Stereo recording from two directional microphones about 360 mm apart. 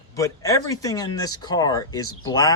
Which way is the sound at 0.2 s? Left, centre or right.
Centre.